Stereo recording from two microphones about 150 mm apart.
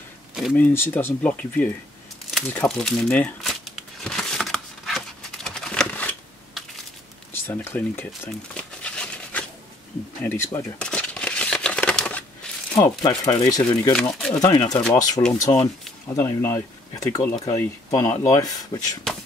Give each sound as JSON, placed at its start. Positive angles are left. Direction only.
{"t": 0.6, "sound": "speech", "side_deg": 10}
{"t": 3.6, "sound": "a sound", "side_deg": 5}
{"t": 7.4, "sound": "speech", "side_deg": 15}
{"t": 8.5, "sound": "a sound", "side_deg": 5}
{"t": 10.2, "sound": "speech", "side_deg": 15}
{"t": 10.8, "sound": "a sound", "side_deg": 5}
{"t": 12.7, "sound": "speech", "side_deg": 25}
{"t": 14.1, "sound": "speech", "side_deg": 5}
{"t": 14.4, "sound": "speech", "side_deg": 25}